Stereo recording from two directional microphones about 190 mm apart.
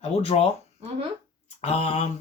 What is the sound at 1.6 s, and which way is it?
Speech, 35° left (ahead or behind).